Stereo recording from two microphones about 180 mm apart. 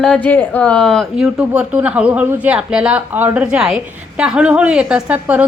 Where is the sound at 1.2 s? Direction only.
10° right (ahead or behind).